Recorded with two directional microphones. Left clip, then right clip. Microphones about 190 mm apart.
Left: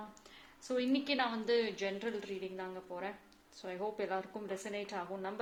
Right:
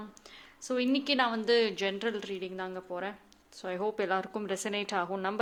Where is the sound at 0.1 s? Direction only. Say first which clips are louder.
Right 5 dB; 25° right (ahead or behind).